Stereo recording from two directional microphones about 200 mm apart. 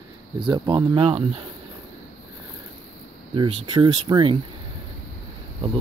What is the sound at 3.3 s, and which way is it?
Speech, 25° right (ahead or behind).